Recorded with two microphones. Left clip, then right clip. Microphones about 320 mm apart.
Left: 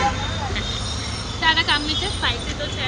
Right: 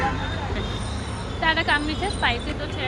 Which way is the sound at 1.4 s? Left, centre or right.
Centre.